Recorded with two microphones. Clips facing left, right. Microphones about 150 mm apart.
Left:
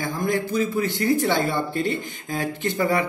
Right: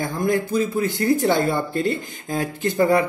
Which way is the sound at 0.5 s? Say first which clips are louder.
Right 2 dB; 45° right (ahead or behind).